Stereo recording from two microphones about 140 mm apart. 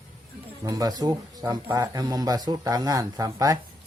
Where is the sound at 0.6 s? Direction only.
25° right (ahead or behind).